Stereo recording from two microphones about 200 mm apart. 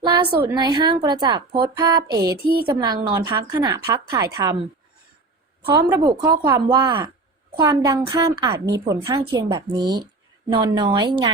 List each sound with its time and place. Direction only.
0.0 s a woman's voice: 20° right (ahead or behind)
5.6 s a woman's voice: 20° right (ahead or behind)